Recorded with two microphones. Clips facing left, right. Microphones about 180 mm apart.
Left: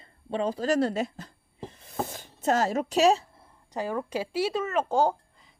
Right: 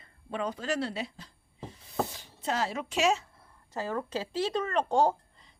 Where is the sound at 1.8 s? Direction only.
50° left (ahead or behind); by 3.5 s 35° left (ahead or behind).